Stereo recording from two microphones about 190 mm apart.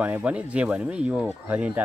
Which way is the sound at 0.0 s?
5° right (ahead or behind).